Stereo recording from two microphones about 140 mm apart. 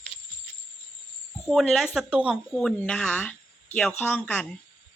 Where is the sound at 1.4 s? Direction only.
Centre (ahead or behind).